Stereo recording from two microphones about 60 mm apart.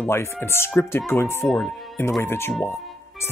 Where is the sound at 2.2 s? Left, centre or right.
Left.